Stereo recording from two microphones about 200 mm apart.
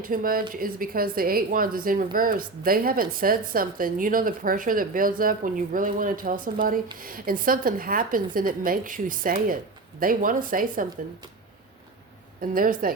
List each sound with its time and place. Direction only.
0.0 s a woman's voice: 45° right (ahead or behind)
12.4 s a woman's voice: 45° right (ahead or behind)